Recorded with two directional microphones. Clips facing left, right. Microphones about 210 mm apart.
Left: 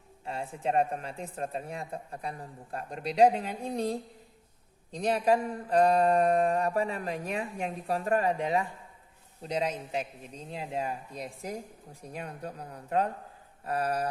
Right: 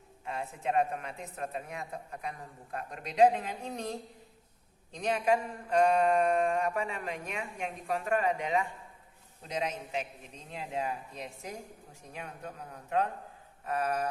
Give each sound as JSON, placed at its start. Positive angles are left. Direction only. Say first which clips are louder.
{"t": 0.3, "sound": "mantra", "louder": "left 2 dB", "side_deg": 30}